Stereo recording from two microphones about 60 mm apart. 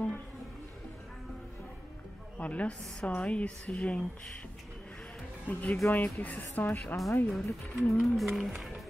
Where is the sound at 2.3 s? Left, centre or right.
Left.